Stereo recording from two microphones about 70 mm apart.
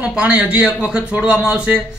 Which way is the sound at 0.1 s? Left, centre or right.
Centre.